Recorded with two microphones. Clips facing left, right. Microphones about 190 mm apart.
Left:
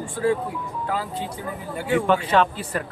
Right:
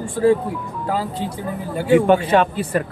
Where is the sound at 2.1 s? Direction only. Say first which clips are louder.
Right 4 dB; 15° right (ahead or behind).